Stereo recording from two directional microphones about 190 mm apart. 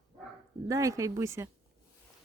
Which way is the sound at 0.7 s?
15° right (ahead or behind).